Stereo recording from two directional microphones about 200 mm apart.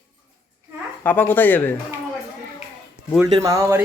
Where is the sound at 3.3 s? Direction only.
20° right (ahead or behind).